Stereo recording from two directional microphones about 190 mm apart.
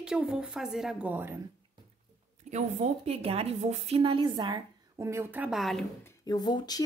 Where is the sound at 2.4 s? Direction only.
40° right (ahead or behind); by 5.8 s centre (ahead or behind).